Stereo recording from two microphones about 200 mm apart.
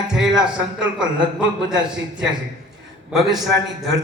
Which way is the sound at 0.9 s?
5° right (ahead or behind).